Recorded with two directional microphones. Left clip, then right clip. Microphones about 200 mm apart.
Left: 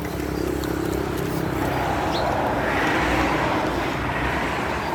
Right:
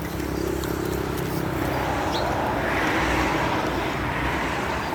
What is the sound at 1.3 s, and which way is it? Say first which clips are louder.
Vehicle: left 2 dB; 45° left (ahead or behind).